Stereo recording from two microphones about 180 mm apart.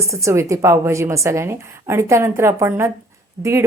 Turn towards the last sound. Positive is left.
turn(degrees=-15)  # may be behind; listen again after turning